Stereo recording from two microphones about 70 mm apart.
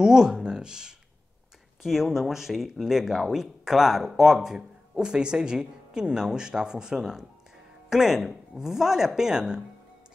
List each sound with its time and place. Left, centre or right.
0.0 s speech: centre